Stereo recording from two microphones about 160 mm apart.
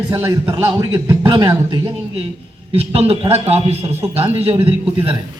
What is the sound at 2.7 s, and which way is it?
A man's voice, 40° right (ahead or behind).